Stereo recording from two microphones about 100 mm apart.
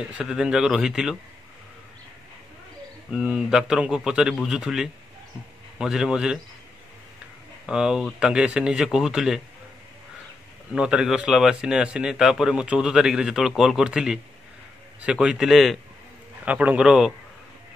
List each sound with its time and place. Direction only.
0.0 s speech: 10° right (ahead or behind)
3.1 s a man's voice: 5° right (ahead or behind)
7.6 s speech: 10° right (ahead or behind)
10.7 s a man's voice: 10° right (ahead or behind)
16.4 s speech: 15° right (ahead or behind)